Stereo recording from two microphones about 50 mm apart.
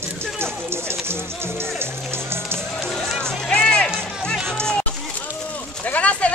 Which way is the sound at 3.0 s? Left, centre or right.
Centre.